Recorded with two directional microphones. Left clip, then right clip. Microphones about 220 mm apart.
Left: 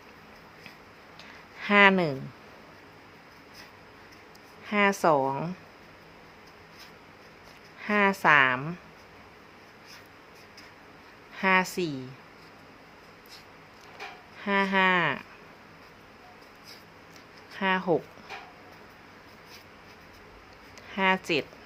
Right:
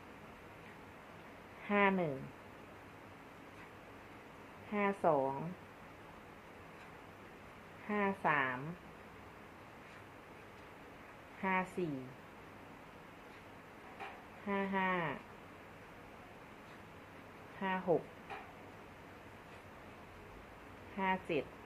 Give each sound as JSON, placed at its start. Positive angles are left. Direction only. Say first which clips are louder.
{"t": 1.6, "sound": "a woman's voice", "louder": "left 13 dB", "side_deg": 40}
{"t": 4.7, "sound": "speech", "louder": "left 10 dB", "side_deg": 40}
{"t": 7.9, "sound": "a woman's voice", "louder": "left 13 dB", "side_deg": 40}
{"t": 11.3, "sound": "a woman's voice", "louder": "left 12 dB", "side_deg": 40}
{"t": 14.4, "sound": "a woman's voice", "louder": "left 13 dB", "side_deg": 40}
{"t": 17.6, "sound": "a woman's voice", "louder": "left 10 dB", "side_deg": 40}
{"t": 20.9, "sound": "a woman's voice", "louder": "left 11 dB", "side_deg": 40}